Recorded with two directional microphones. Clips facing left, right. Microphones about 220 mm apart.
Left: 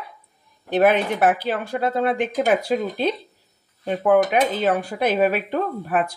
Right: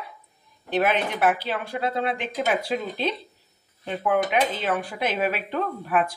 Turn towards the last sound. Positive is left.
turn(degrees=40)  # may be behind; listen again after turning